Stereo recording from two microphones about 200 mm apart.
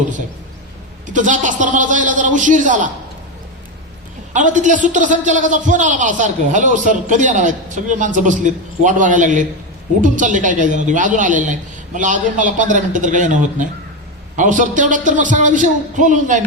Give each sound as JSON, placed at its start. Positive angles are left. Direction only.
{"t": 1.1, "sound": "a man's voice", "side_deg": -40}
{"t": 4.4, "sound": "a man's voice", "side_deg": -40}